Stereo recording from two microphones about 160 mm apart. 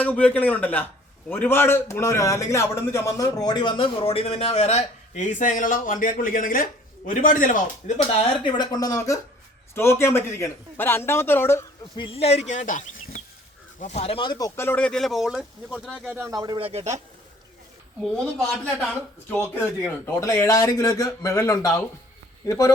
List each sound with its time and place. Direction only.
0.0 s a man's voice: 10° left (ahead or behind); by 7.9 s 55° left (ahead or behind)
8.4 s speech: 25° left (ahead or behind)
11.9 s speech: 35° left (ahead or behind); by 16.0 s 5° left (ahead or behind)
16.0 s speech: 15° right (ahead or behind)
16.3 s speech: 25° right (ahead or behind); by 17.0 s 40° right (ahead or behind)
18.3 s a man's voice: centre (ahead or behind)
19.8 s speech: 15° left (ahead or behind)